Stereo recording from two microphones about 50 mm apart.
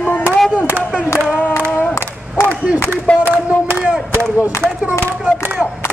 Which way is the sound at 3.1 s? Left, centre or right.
Left.